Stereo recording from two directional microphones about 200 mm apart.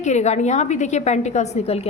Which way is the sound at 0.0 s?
35° left (ahead or behind).